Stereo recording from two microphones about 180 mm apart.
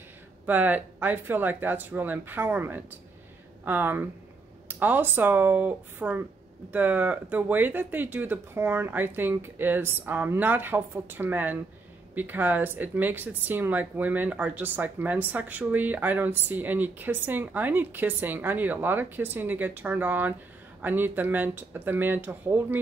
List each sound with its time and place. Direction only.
0.5 s speech: 10° right (ahead or behind)